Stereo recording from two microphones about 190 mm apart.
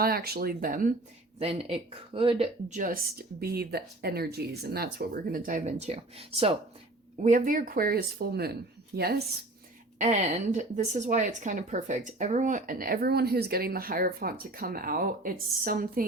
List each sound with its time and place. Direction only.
0.0 s a woman's voice: 50° right (ahead or behind)
1.4 s a woman's voice: 30° right (ahead or behind)
7.2 s a woman's voice: 40° right (ahead or behind)
10.0 s a woman's voice: 40° right (ahead or behind)